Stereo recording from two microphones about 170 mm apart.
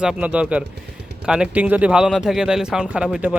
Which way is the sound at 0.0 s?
5° right (ahead or behind).